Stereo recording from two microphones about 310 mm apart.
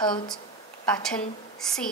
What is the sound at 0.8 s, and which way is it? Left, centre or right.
A woman's voice, centre.